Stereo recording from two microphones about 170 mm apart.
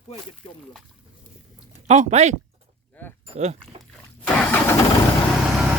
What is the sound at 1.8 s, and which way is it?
Speech, 40° right (ahead or behind).